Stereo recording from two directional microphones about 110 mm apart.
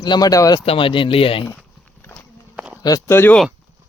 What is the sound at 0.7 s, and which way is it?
Speech, 55° left (ahead or behind).